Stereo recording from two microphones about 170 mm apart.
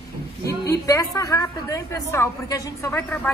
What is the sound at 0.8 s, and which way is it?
A woman's voice, 20° left (ahead or behind).